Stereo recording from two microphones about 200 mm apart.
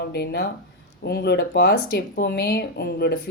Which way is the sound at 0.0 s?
55° left (ahead or behind).